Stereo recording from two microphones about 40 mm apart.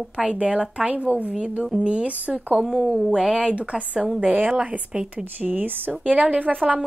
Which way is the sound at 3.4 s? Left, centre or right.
Right.